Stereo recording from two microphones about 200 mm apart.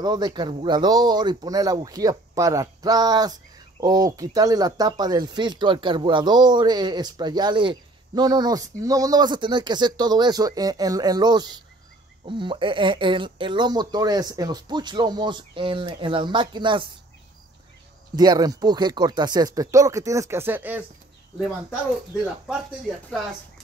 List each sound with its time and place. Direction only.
0.0 s speech: 20° right (ahead or behind)
18.1 s speech: 20° right (ahead or behind)